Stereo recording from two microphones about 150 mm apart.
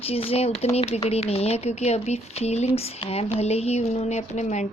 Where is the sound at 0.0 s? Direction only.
40° left (ahead or behind).